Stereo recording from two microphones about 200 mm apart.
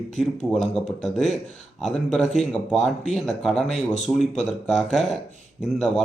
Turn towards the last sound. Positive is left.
turn(degrees=0)  # may be behind; listen again after turning